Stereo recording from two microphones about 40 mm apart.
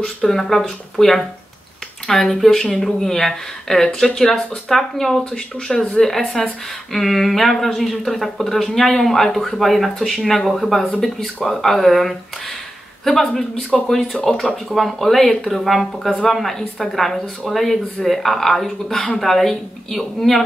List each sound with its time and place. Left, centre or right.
0.3 s speech: centre
18.9 s speech: centre
19.2 s speech: centre